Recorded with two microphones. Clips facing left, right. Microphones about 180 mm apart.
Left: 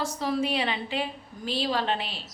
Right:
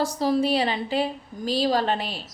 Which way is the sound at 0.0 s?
35° right (ahead or behind).